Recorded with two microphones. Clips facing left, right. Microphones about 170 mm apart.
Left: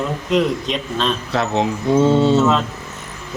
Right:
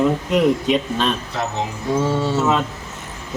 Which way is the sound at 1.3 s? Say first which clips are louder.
Left 5 dB; 80° left.